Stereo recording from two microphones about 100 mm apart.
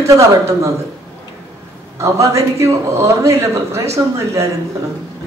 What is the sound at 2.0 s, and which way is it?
A woman's voice, 30° right (ahead or behind).